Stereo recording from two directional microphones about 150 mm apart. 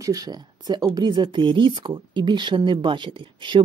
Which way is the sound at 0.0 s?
25° right (ahead or behind).